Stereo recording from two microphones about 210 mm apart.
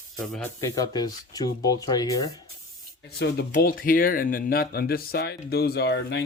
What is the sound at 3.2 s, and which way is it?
Speech, 45° left (ahead or behind).